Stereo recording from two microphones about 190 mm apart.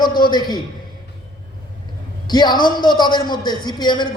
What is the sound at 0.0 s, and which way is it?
Speech, 25° left (ahead or behind).